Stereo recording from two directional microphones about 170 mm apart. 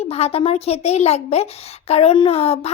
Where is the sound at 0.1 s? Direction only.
35° left (ahead or behind).